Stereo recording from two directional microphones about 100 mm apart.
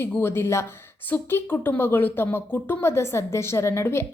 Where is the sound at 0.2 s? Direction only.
25° left (ahead or behind).